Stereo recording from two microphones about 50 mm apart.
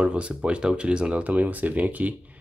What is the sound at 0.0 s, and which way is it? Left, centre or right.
Speech, right.